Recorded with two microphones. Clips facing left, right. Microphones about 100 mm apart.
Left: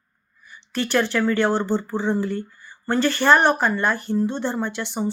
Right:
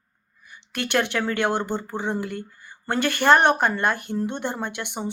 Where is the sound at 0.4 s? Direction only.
60° right (ahead or behind).